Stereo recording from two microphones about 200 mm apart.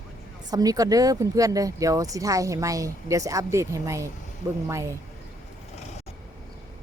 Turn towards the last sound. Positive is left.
turn(degrees=-15)  # may be behind; listen again after turning